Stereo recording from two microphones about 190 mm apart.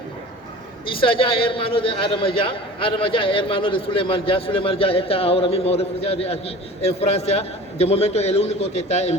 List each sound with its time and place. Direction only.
0.9 s a man's voice: 30° left (ahead or behind)